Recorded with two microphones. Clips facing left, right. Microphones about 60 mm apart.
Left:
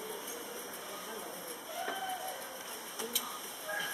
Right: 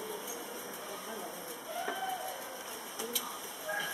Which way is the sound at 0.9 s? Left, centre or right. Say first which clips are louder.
Right 2 dB; centre.